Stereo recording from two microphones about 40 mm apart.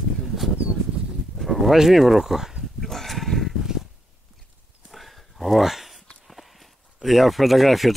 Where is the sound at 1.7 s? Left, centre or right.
Centre.